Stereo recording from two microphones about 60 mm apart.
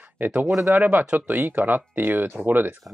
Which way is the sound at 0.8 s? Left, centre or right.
Right.